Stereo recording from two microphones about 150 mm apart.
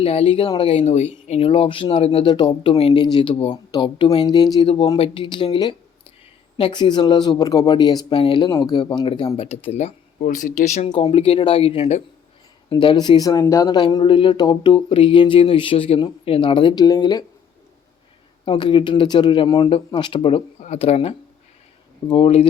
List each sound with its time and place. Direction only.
0.0 s speech: 40° left (ahead or behind)
4.9 s speech: 35° left (ahead or behind)
10.2 s speech: 60° left (ahead or behind)
10.8 s speech: 25° left (ahead or behind)
11.1 s speech: 40° left (ahead or behind)
12.7 s speech: 30° left (ahead or behind)
18.4 s speech: 35° left (ahead or behind)